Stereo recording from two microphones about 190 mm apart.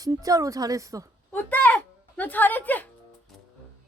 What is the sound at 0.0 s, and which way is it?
Speech, 20° right (ahead or behind).